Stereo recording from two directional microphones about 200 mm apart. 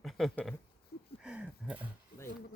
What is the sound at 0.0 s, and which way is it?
Speech, centre (ahead or behind).